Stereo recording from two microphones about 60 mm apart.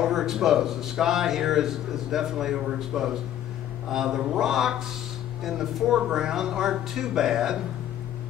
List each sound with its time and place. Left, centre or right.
0.0 s speech: centre